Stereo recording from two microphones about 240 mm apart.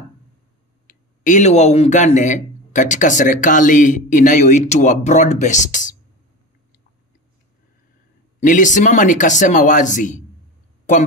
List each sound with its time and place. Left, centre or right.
0.8 s speech: left
8.4 s speech: left